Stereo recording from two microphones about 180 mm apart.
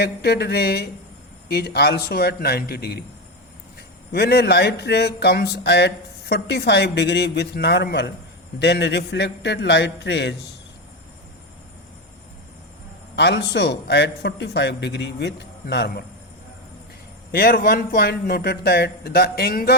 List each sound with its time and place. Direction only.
0.0 s a man's voice: 65° left (ahead or behind)
13.1 s speech: 70° left (ahead or behind)
17.3 s a man's voice: 55° left (ahead or behind)